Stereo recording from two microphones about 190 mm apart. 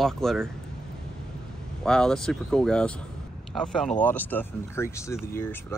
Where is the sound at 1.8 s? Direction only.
5° left (ahead or behind).